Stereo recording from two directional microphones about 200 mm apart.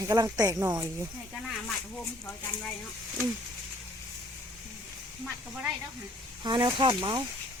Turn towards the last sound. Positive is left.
turn(degrees=-25)  # may be behind; listen again after turning